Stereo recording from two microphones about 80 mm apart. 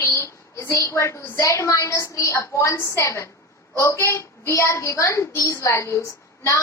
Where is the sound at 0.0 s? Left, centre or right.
Left.